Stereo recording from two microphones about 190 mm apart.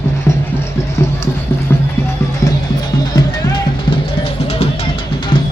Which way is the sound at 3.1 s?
20° left (ahead or behind).